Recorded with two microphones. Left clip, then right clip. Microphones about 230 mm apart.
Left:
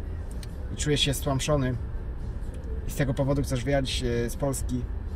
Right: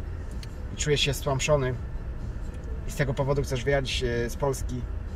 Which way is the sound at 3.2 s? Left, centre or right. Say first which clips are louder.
Right 1 dB; centre.